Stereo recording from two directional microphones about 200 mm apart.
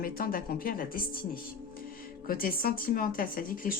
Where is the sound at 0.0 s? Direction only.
45° left (ahead or behind).